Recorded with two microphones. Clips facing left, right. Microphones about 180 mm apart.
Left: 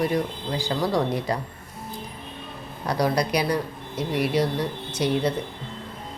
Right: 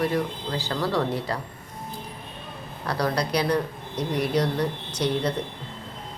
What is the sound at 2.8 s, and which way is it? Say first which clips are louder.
Speech: left 3 dB; 15° left (ahead or behind).